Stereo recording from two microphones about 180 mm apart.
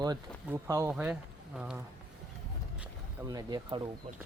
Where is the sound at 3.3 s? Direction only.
20° right (ahead or behind).